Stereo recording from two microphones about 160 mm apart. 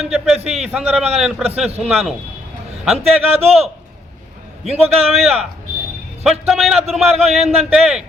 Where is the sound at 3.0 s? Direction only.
40° right (ahead or behind).